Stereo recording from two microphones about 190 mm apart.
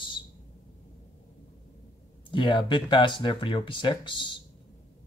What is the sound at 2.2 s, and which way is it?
Speech, 25° left (ahead or behind).